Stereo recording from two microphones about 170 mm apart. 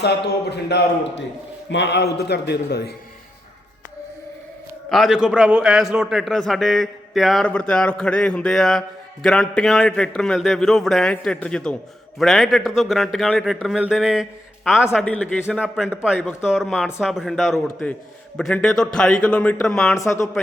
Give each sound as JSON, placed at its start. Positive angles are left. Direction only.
{"t": 0.5, "sound": "a man's voice", "side_deg": 85}
{"t": 4.9, "sound": "a man's voice", "side_deg": 0}
{"t": 15.0, "sound": "speech", "side_deg": 10}
{"t": 15.4, "sound": "a man's voice", "side_deg": -5}
{"t": 19.9, "sound": "speech", "side_deg": 15}